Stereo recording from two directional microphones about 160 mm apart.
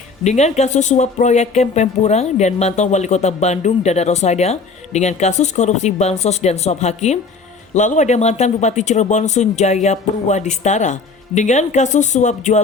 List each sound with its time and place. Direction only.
0.3 s speech: 45° left (ahead or behind)